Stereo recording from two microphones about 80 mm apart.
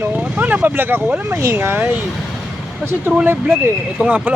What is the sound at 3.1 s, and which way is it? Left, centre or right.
Speech, right.